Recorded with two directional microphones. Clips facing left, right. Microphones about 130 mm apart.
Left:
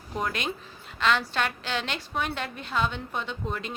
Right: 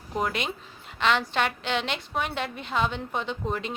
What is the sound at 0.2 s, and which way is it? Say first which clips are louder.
A woman's voice: right 2 dB; 20° right (ahead or behind).